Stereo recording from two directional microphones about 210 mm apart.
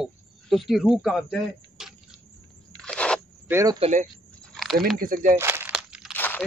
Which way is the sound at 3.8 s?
30° right (ahead or behind).